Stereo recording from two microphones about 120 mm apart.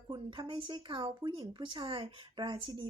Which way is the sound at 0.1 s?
40° right (ahead or behind).